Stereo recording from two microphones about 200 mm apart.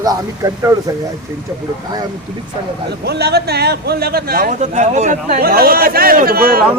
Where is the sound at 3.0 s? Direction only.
55° right (ahead or behind).